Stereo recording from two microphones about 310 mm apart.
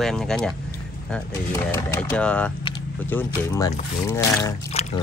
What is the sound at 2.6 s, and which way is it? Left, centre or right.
Vehicle, centre.